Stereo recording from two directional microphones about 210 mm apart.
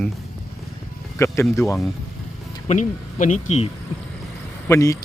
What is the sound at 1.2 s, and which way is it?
Speech, 15° left (ahead or behind).